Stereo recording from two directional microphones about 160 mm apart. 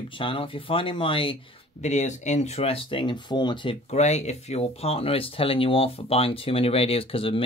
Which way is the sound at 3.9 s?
45° left (ahead or behind).